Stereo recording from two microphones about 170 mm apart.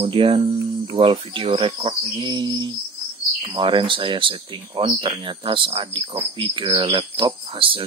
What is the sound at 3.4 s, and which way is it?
Speech, 30° right (ahead or behind).